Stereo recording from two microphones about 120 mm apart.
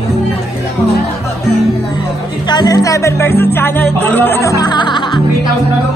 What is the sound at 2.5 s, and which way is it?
Speech, 35° left (ahead or behind).